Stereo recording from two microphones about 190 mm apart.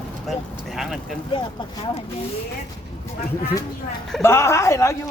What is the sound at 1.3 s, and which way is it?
Speech, 25° left (ahead or behind).